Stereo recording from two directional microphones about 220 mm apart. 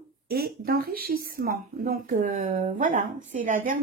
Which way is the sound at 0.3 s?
45° right (ahead or behind).